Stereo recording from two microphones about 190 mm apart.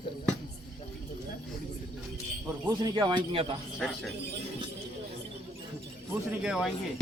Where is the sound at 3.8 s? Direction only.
Centre (ahead or behind).